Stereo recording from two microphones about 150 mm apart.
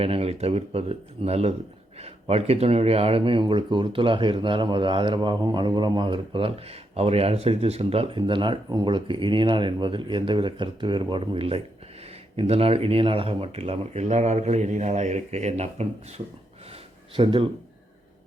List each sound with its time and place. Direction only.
0.0 s speech: 40° right (ahead or behind)
17.2 s speech: 35° right (ahead or behind)